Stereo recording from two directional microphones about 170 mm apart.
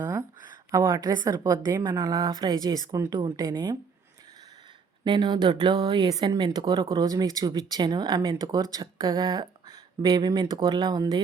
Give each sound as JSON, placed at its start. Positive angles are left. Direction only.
{"t": 0.0, "sound": "a sound", "side_deg": -20}
{"t": 0.7, "sound": "a woman's voice", "side_deg": -20}
{"t": 5.0, "sound": "a woman's voice", "side_deg": -25}